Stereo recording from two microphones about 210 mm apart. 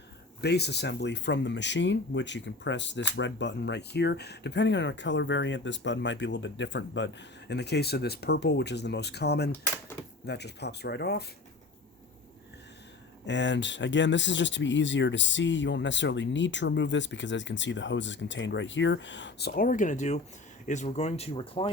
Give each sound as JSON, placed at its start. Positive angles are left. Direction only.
{"t": 0.4, "sound": "speech", "side_deg": 50}
{"t": 13.2, "sound": "speech", "side_deg": 55}